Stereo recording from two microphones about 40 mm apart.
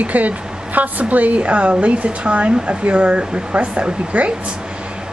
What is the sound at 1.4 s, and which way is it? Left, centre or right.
Speech, right.